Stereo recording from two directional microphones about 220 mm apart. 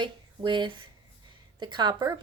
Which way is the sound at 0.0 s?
20° right (ahead or behind).